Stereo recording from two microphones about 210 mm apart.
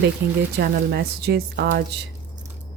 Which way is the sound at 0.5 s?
50° right (ahead or behind).